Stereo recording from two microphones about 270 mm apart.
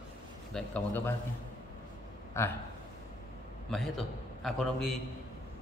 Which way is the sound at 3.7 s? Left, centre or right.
Centre.